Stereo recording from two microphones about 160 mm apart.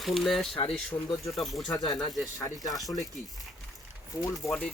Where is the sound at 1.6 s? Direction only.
25° left (ahead or behind).